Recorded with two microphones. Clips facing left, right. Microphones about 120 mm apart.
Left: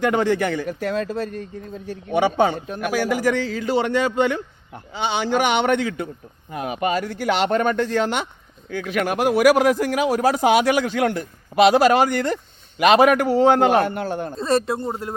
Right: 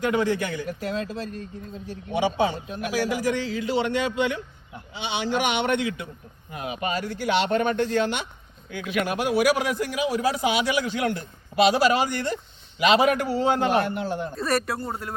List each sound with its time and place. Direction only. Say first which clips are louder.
0.0 s a man's voice: left 4 dB; 65° left (ahead or behind)
14.3 s speech: left 7 dB; 25° left (ahead or behind)